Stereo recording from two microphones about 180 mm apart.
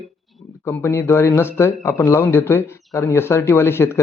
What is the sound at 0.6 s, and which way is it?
Speech, 15° left (ahead or behind).